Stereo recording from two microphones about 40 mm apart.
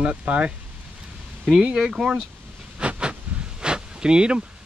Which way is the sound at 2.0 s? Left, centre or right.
Centre.